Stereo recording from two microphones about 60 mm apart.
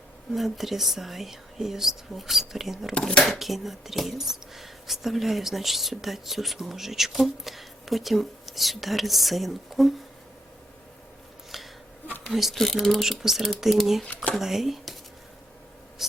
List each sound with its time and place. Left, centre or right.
0.3 s speech: centre
11.5 s a sound: centre
12.3 s speech: centre
16.0 s speech: centre